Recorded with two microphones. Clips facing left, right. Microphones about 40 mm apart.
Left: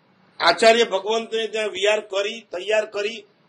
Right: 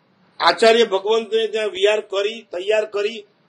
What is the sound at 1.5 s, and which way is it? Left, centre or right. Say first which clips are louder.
A man's voice: right 3 dB; centre.